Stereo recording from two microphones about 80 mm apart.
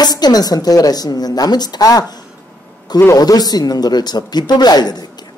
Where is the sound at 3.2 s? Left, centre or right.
Left.